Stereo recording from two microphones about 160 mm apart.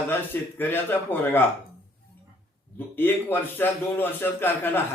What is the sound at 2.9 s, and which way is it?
A man's voice, 15° left (ahead or behind).